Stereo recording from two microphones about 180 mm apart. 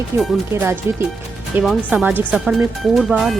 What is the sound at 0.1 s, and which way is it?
Speech, 15° right (ahead or behind).